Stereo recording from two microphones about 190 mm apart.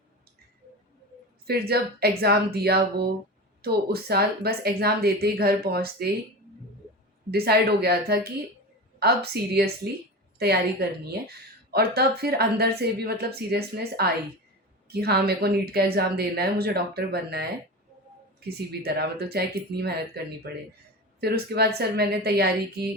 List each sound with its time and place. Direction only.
1.5 s a woman's voice: 55° right (ahead or behind)
7.3 s a woman's voice: 55° right (ahead or behind)